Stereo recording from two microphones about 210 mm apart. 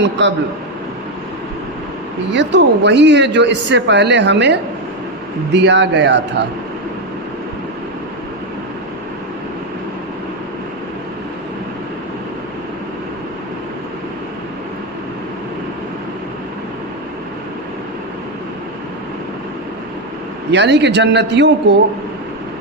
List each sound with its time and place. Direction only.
0.2 s a man's voice: 60° right (ahead or behind)
2.3 s a man's voice: 55° right (ahead or behind)
20.5 s a man's voice: 55° right (ahead or behind)